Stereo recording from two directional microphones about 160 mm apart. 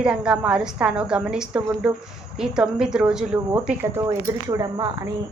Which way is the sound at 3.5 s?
15° right (ahead or behind).